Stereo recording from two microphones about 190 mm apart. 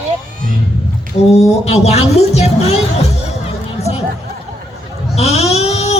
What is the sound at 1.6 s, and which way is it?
Speech, 35° left (ahead or behind).